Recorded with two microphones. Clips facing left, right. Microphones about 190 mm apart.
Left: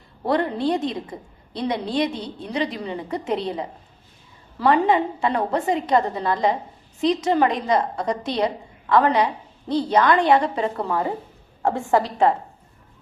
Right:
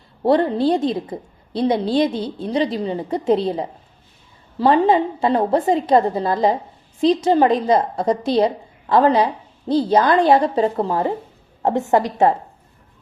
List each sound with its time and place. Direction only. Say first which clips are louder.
0.2 s a woman's voice: right 6 dB; 30° right (ahead or behind)